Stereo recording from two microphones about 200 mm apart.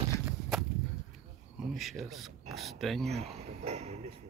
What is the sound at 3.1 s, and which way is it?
Speech, 35° right (ahead or behind).